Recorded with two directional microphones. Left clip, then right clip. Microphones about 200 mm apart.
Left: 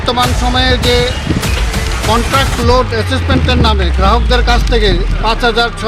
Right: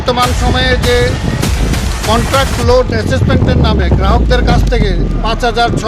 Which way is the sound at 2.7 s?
30° right (ahead or behind).